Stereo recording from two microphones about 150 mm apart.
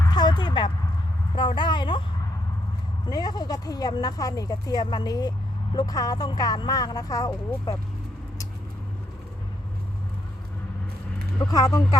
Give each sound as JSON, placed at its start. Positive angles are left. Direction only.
{"t": 0.1, "sound": "a sound", "side_deg": 30}
{"t": 1.4, "sound": "a woman's voice", "side_deg": 30}
{"t": 3.1, "sound": "speech", "side_deg": 25}
{"t": 11.4, "sound": "speech", "side_deg": 25}